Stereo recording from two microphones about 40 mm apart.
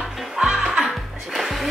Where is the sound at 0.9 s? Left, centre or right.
Centre.